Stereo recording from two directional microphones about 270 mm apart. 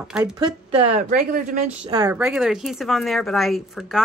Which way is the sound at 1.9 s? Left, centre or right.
Centre.